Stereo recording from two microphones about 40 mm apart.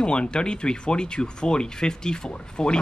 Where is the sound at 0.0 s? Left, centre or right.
Left.